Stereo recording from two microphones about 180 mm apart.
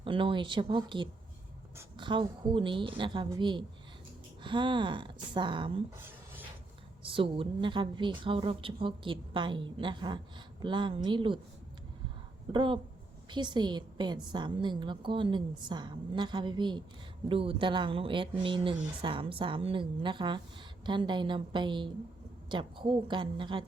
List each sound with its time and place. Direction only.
0.0 s a woman's voice: 30° right (ahead or behind)
6.0 s a sound: 10° right (ahead or behind)
7.0 s a woman's voice: 30° right (ahead or behind)
12.5 s a woman's voice: 25° right (ahead or behind)